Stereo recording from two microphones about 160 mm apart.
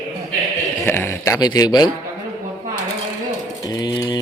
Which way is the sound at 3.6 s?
25° left (ahead or behind).